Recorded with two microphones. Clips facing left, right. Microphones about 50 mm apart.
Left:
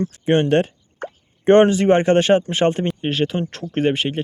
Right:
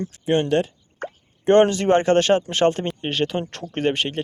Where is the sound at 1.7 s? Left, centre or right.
Centre.